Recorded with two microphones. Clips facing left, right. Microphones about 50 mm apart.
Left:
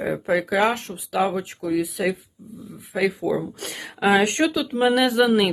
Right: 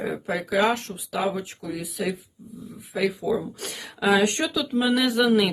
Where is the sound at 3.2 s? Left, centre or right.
Centre.